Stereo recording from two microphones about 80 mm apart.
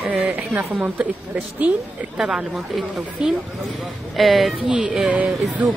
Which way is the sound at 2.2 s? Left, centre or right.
Centre.